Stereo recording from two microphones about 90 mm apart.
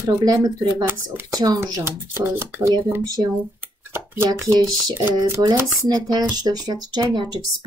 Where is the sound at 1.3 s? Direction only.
45° right (ahead or behind).